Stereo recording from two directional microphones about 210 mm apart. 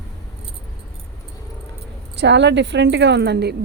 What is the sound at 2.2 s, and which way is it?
A woman's voice, 55° right (ahead or behind).